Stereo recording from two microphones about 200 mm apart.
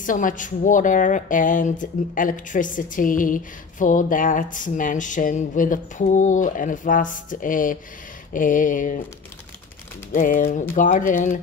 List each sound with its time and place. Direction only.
0.0 s a woman's voice: 40° left (ahead or behind)
10.1 s a woman's voice: 40° left (ahead or behind)